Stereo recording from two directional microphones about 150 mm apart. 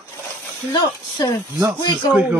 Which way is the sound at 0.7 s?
25° left (ahead or behind).